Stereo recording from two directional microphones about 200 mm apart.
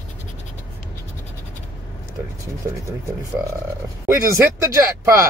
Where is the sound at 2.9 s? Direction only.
15° right (ahead or behind).